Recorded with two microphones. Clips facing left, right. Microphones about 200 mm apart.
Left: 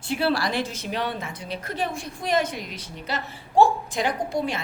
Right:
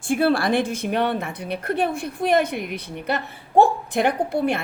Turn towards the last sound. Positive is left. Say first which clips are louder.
# right 4 dB
turn(degrees=-60)  # may be behind; listen again after turning